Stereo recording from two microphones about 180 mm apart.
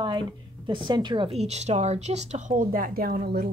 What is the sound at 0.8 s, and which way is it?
A woman's voice, 25° right (ahead or behind).